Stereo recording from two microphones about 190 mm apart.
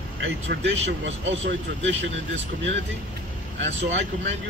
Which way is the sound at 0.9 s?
70° right (ahead or behind).